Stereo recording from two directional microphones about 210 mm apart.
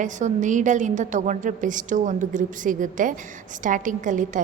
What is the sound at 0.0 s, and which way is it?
A woman's voice, 35° right (ahead or behind).